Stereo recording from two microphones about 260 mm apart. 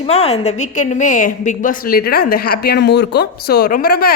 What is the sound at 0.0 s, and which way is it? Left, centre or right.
A woman's voice, left.